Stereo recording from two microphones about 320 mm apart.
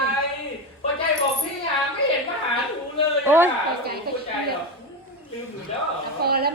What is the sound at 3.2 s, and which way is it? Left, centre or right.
Speech, centre.